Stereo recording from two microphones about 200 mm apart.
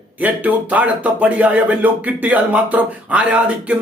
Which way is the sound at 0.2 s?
10° right (ahead or behind).